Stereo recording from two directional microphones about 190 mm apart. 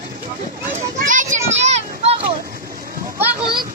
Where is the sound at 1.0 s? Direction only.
45° right (ahead or behind).